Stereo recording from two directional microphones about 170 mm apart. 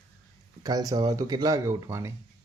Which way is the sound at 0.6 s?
20° right (ahead or behind).